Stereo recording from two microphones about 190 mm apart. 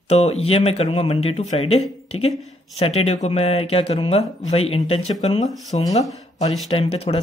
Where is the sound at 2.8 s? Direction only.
35° left (ahead or behind).